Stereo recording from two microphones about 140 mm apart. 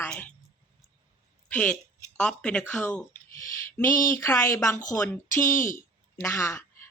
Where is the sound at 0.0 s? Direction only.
10° left (ahead or behind).